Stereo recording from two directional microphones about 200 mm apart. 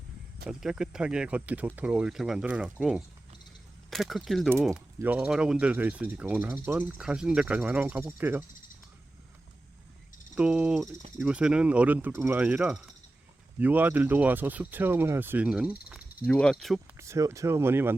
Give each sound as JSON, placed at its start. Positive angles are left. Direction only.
{"t": 0.4, "sound": "speech", "side_deg": -5}
{"t": 10.3, "sound": "speech", "side_deg": -5}
{"t": 16.0, "sound": "cricket", "side_deg": 50}
{"t": 16.2, "sound": "speech", "side_deg": 5}
{"t": 17.0, "sound": "speech", "side_deg": -15}